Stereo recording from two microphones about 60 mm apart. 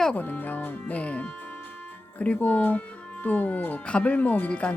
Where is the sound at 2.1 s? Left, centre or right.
Left.